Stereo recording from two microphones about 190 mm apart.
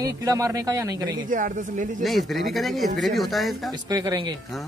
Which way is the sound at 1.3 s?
45° right (ahead or behind).